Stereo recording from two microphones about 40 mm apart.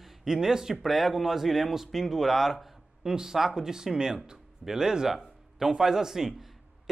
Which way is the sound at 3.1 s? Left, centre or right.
Centre.